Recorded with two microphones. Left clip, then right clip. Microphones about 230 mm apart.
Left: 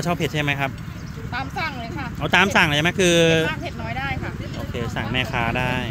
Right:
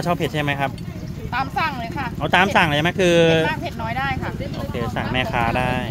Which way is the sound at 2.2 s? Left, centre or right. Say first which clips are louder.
Right 1 dB; left.